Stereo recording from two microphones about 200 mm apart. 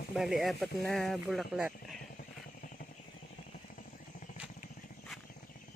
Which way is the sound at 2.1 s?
45° left (ahead or behind).